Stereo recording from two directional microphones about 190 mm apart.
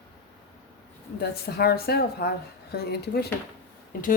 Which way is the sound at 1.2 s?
55° left (ahead or behind).